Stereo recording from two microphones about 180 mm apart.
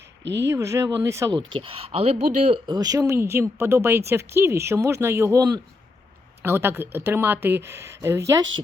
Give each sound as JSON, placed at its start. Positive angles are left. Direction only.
{"t": 0.3, "sound": "speech", "side_deg": -15}
{"t": 2.6, "sound": "speech", "side_deg": -20}